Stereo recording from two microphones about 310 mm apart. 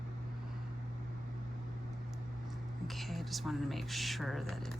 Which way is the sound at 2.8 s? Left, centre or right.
Centre.